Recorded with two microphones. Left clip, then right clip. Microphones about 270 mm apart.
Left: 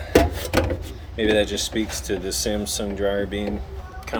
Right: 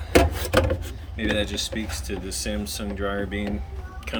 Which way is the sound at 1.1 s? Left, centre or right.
Centre.